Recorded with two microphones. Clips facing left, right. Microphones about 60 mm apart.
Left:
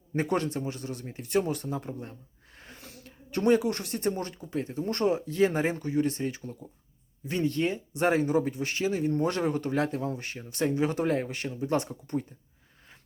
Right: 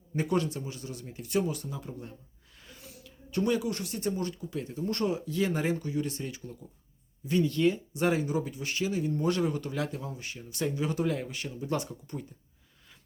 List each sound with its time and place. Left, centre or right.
0.1 s speech: left
2.6 s a sound: left
2.8 s speech: left